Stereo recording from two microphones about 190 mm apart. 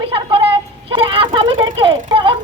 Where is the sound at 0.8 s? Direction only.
30° right (ahead or behind).